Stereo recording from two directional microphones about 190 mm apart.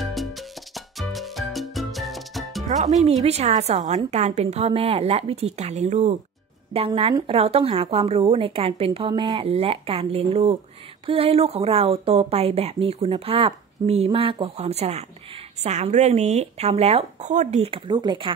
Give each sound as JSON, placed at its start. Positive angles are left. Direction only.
{"t": 0.0, "sound": "music", "side_deg": 0}
{"t": 2.8, "sound": "speech", "side_deg": -35}